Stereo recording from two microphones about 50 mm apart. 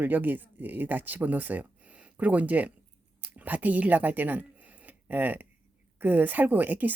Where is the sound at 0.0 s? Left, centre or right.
Right.